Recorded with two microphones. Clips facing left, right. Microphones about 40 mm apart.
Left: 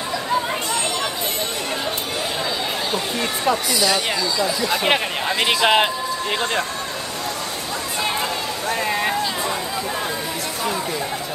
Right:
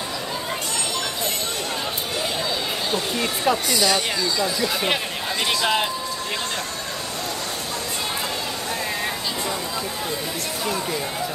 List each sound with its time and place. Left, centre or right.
2.9 s speech: centre
4.6 s speech: left
10.6 s chatter: centre